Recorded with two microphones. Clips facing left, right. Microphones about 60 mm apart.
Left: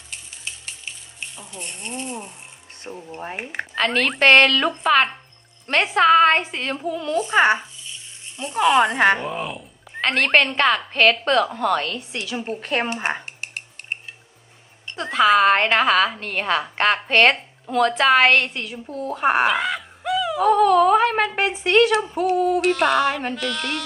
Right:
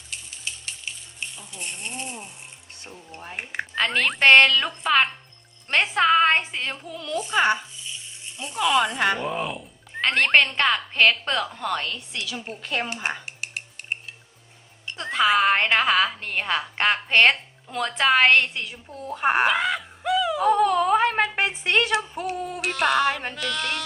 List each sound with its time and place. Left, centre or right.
0.1 s music: centre
2.9 s speech: left
3.3 s speech: centre
3.6 s music: centre
6.7 s speech: centre
7.0 s speech: left
9.2 s speech: centre
11.4 s music: centre
12.1 s speech: left
14.9 s music: centre
18.9 s speech: left
19.1 s a woman's voice: centre
22.1 s music: centre